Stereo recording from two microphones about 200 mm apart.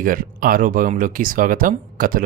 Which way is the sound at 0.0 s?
45° right (ahead or behind).